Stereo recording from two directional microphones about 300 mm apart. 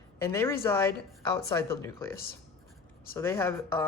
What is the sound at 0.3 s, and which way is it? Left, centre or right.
Speech, centre.